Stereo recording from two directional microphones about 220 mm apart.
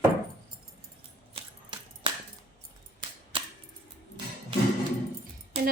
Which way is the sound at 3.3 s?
25° right (ahead or behind).